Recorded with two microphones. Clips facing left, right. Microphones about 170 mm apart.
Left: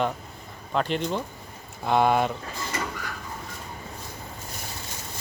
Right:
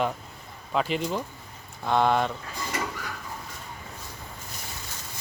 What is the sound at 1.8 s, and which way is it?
Speech, 10° left (ahead or behind).